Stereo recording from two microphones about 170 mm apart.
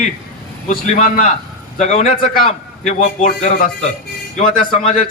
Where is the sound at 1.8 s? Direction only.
45° left (ahead or behind).